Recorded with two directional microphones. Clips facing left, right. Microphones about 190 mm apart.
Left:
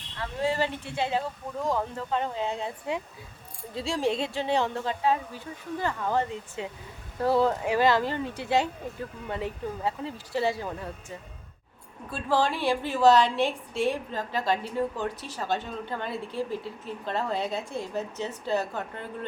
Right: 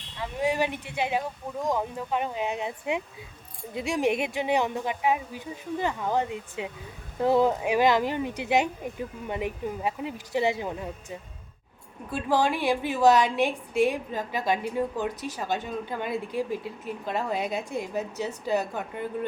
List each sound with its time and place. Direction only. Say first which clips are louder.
0.2 s a woman's voice: right 1 dB; 15° right (ahead or behind)